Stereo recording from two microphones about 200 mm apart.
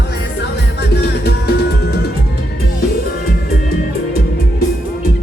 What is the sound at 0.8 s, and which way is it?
Music, 55° left (ahead or behind).